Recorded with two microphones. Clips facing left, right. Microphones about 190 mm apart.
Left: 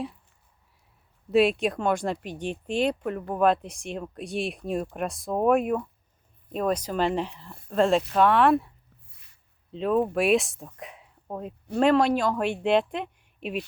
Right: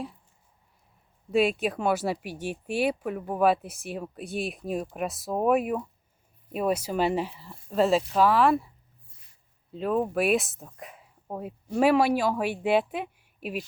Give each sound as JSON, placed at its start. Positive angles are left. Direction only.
{"t": 1.3, "sound": "speech", "side_deg": 0}
{"t": 9.0, "sound": "a sound", "side_deg": 70}
{"t": 9.7, "sound": "speech", "side_deg": -5}